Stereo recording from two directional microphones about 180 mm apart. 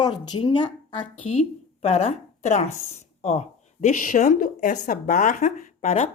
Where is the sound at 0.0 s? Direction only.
25° left (ahead or behind).